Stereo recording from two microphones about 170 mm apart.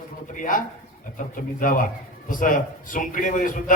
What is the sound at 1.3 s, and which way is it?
A man's voice, 50° left (ahead or behind).